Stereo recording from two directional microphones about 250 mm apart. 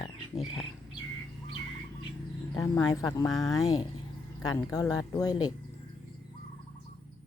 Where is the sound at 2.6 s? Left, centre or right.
Centre.